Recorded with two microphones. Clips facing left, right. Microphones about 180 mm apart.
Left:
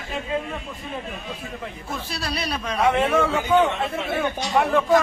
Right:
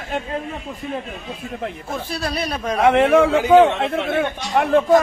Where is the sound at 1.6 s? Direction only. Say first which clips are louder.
Right 5 dB; 50° right (ahead or behind).